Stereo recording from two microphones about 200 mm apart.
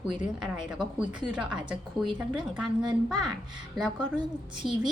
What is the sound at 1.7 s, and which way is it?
Speech, 25° right (ahead or behind).